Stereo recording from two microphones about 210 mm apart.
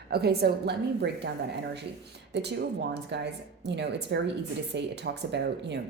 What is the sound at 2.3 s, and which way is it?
A woman's voice, 55° right (ahead or behind).